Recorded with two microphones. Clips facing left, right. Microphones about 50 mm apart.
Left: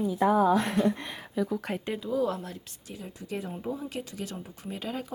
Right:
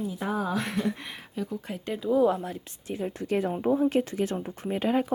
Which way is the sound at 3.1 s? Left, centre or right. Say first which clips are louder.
Right 7 dB; right.